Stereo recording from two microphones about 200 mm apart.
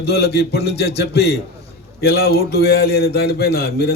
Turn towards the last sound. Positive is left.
turn(degrees=50)  # may be behind; listen again after turning